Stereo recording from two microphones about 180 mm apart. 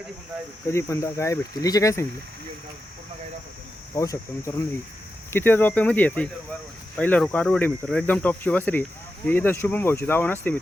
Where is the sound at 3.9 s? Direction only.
15° left (ahead or behind).